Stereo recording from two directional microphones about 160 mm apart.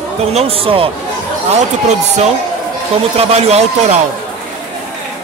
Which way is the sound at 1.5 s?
45° right (ahead or behind).